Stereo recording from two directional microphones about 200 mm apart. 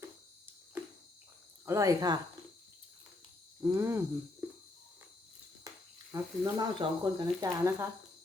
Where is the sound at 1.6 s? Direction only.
15° right (ahead or behind).